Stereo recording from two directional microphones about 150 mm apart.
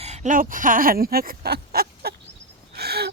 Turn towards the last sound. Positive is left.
turn(degrees=-90)